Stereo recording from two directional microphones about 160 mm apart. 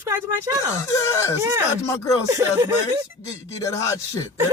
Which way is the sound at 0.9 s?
20° left (ahead or behind).